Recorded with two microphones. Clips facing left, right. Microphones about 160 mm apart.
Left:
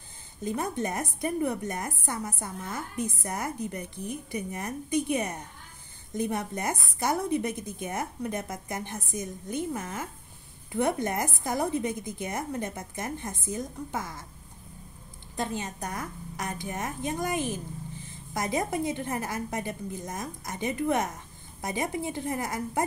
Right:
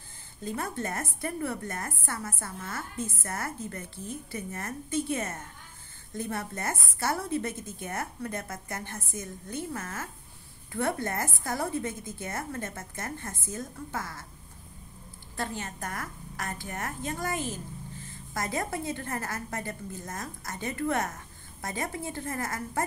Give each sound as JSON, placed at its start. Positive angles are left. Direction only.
{"t": 0.4, "sound": "a woman's voice", "side_deg": 20}
{"t": 15.3, "sound": "a woman's voice", "side_deg": 20}